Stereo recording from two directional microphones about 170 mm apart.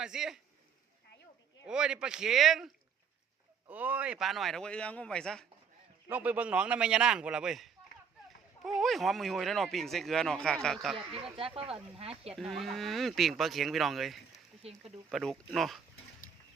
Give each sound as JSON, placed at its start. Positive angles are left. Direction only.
{"t": 0.0, "sound": "speech", "side_deg": -5}
{"t": 1.6, "sound": "speech", "side_deg": -5}
{"t": 3.7, "sound": "speech", "side_deg": -10}
{"t": 6.1, "sound": "speech", "side_deg": -10}
{"t": 10.9, "sound": "speech", "side_deg": -30}
{"t": 12.3, "sound": "speech", "side_deg": 0}
{"t": 14.6, "sound": "speech", "side_deg": -35}
{"t": 15.1, "sound": "speech", "side_deg": 0}